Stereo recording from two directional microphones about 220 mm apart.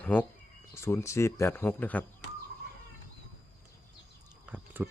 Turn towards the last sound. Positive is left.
turn(degrees=-10)  # may be behind; listen again after turning